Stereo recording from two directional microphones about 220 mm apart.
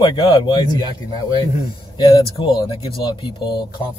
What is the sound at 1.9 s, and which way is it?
Speech, 20° left (ahead or behind).